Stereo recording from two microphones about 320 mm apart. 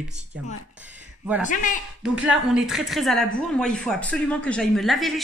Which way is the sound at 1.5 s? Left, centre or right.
Left.